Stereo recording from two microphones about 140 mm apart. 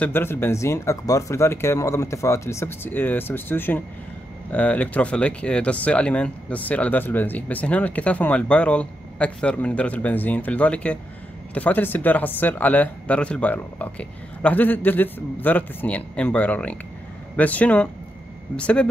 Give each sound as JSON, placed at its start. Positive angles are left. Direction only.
{"t": 0.0, "sound": "speech", "side_deg": 15}